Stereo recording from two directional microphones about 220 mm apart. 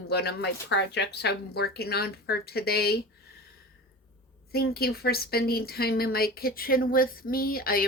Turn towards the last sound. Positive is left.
turn(degrees=40)  # may be behind; listen again after turning